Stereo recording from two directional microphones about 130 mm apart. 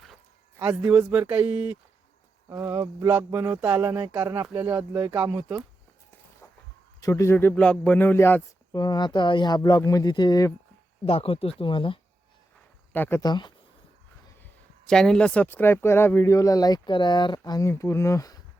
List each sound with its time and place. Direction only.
0.9 s speech: 15° right (ahead or behind)
2.5 s speech: 25° right (ahead or behind)
6.4 s a sound: 25° left (ahead or behind)
7.0 s a man's voice: 25° left (ahead or behind)
8.7 s speech: 30° left (ahead or behind)
11.0 s speech: 45° left (ahead or behind)
12.9 s speech: 15° left (ahead or behind)
13.2 s speech: 35° left (ahead or behind)
14.8 s speech: 5° left (ahead or behind); by 18.3 s 25° left (ahead or behind)